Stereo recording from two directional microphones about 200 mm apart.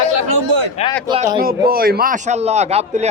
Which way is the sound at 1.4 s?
50° right (ahead or behind).